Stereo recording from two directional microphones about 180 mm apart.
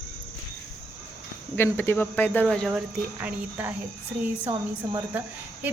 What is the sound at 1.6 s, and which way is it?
Speech, 10° left (ahead or behind).